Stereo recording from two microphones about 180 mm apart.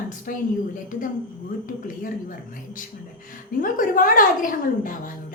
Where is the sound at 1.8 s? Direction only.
50° left (ahead or behind).